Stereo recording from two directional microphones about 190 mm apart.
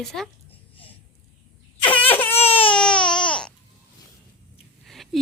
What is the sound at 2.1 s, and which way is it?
Baby cry, 10° left (ahead or behind).